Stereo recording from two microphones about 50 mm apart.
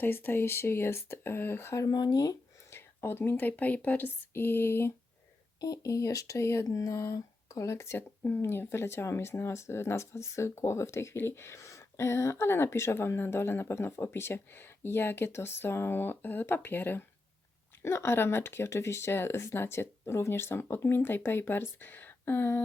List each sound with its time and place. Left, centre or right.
0.0 s speech: left
5.8 s speech: left
17.8 s speech: left